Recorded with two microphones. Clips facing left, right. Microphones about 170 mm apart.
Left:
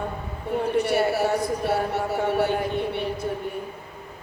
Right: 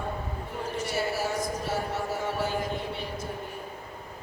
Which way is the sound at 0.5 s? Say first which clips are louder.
Left 10 dB; 65° left (ahead or behind).